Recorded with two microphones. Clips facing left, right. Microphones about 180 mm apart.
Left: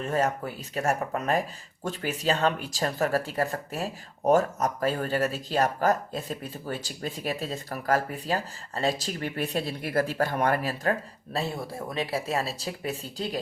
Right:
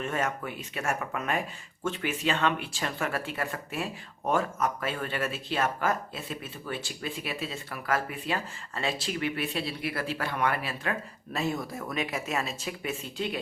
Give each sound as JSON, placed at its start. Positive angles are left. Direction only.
{"t": 0.0, "sound": "speech", "side_deg": 35}
{"t": 11.3, "sound": "speech", "side_deg": 30}